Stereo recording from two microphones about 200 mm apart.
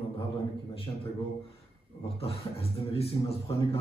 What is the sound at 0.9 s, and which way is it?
Speech, 20° left (ahead or behind).